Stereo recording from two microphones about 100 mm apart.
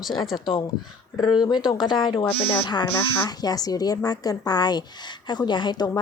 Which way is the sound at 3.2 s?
40° left (ahead or behind).